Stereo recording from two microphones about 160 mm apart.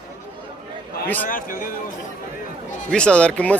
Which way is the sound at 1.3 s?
60° left (ahead or behind).